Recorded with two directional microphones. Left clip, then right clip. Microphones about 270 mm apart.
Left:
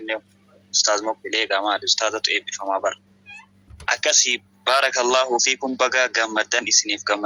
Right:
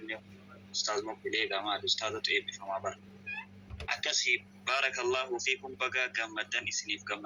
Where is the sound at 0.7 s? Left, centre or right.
Left.